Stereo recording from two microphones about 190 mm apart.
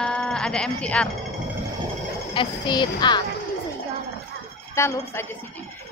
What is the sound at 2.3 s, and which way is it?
Speech, 25° left (ahead or behind).